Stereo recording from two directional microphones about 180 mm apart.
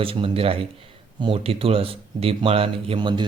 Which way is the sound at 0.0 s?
30° right (ahead or behind).